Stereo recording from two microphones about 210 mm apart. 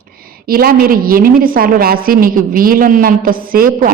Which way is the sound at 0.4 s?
45° right (ahead or behind).